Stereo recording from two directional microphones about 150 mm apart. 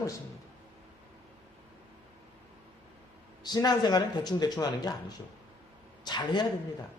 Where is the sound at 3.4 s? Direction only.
25° left (ahead or behind).